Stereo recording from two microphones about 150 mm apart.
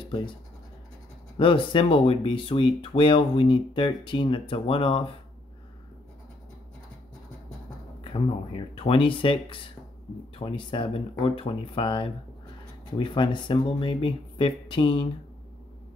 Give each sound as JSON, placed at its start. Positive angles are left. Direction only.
{"t": 0.0, "sound": "scratch", "side_deg": 35}
{"t": 1.4, "sound": "speech", "side_deg": 35}
{"t": 8.0, "sound": "speech", "side_deg": 35}